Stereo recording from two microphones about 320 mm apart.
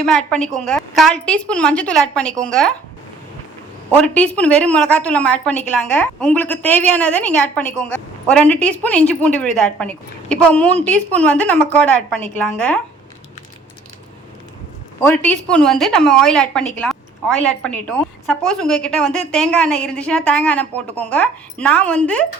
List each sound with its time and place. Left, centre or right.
0.0 s a woman's voice: centre
4.0 s a woman's voice: centre
15.0 s a woman's voice: centre